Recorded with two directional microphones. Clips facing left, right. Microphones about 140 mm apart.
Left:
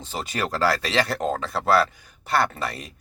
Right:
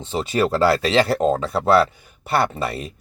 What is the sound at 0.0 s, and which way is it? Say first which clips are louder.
A man's voice: right 8 dB; 25° right (ahead or behind).